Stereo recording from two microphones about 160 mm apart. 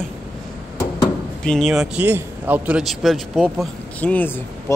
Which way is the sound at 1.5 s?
Centre (ahead or behind).